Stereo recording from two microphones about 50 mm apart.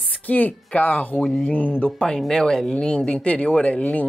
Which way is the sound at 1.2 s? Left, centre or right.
Centre.